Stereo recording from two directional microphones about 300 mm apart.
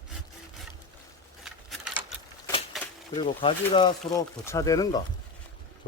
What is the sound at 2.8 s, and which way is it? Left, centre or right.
Typewriter, centre.